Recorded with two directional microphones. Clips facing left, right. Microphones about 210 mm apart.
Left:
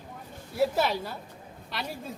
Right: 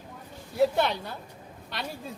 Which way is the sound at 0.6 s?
5° left (ahead or behind).